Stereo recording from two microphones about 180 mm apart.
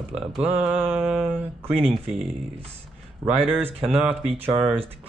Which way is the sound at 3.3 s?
5° right (ahead or behind).